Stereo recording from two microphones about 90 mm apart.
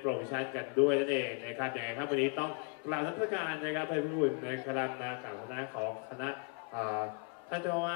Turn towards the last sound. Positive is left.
turn(degrees=-15)  # may be behind; listen again after turning